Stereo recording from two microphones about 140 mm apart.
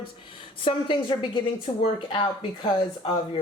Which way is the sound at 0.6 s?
40° left (ahead or behind).